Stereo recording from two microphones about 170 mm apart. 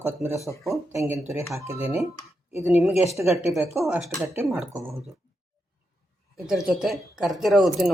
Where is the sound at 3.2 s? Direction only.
10° right (ahead or behind).